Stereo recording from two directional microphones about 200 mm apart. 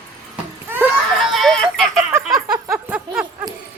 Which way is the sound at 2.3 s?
20° right (ahead or behind).